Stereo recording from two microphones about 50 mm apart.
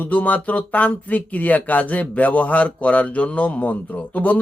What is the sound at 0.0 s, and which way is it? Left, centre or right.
Speech, left.